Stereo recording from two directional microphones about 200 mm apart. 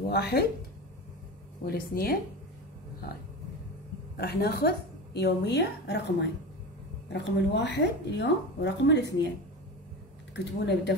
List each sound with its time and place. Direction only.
0.1 s speech: 55° left (ahead or behind)
1.6 s speech: 50° left (ahead or behind)
4.2 s speech: 50° left (ahead or behind)
7.1 s speech: 60° left (ahead or behind)
10.3 s speech: 60° left (ahead or behind)